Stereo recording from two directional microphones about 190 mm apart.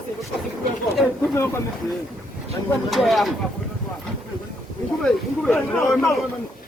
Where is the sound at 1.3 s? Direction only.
15° left (ahead or behind).